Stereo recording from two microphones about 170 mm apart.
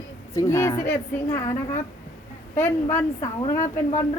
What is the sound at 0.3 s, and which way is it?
Speech, 15° left (ahead or behind).